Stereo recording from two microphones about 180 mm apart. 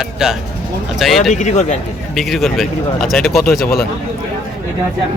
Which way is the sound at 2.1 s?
Centre (ahead or behind).